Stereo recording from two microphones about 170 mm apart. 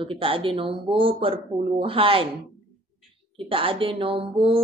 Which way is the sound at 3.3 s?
30° right (ahead or behind).